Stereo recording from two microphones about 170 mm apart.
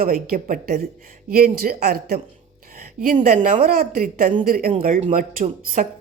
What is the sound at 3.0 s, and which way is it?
A woman's voice, 50° right (ahead or behind).